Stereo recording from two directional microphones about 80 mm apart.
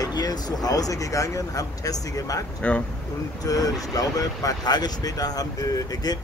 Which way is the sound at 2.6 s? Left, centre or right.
Centre.